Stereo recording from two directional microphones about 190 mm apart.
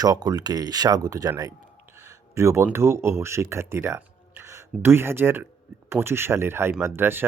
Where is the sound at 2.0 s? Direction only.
15° right (ahead or behind).